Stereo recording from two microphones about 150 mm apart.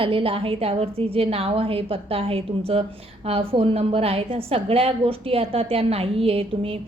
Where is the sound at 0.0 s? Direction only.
35° right (ahead or behind).